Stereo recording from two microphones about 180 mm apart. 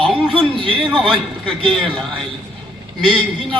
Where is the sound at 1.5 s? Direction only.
30° right (ahead or behind).